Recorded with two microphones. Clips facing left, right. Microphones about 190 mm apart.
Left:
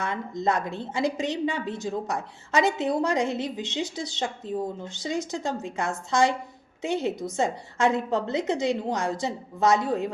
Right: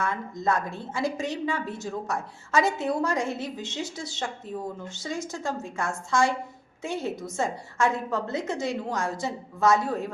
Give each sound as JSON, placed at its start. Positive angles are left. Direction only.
{"t": 0.0, "sound": "a woman's voice", "side_deg": 20}